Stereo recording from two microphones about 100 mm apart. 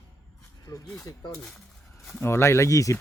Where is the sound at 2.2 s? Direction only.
25° left (ahead or behind).